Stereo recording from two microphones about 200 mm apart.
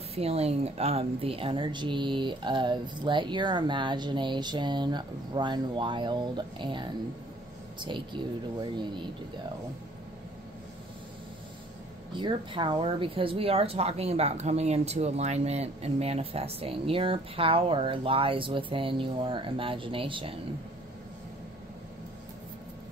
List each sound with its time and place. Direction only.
0.1 s a woman's voice: 30° right (ahead or behind)
12.1 s a woman's voice: 25° right (ahead or behind)